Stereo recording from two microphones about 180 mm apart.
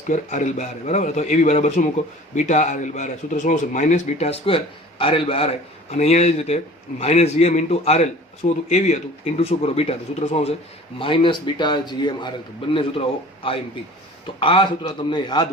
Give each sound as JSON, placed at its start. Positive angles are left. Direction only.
{"t": 0.1, "sound": "a man's voice", "side_deg": 40}